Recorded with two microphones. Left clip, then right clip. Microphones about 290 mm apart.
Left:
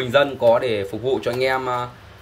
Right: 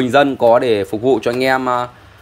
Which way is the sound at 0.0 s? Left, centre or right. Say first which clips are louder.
Right 4 dB; centre.